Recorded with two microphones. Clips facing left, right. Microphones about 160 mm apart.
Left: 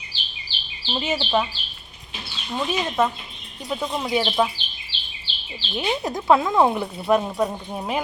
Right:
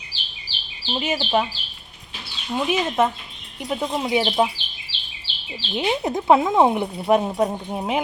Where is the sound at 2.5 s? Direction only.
10° right (ahead or behind).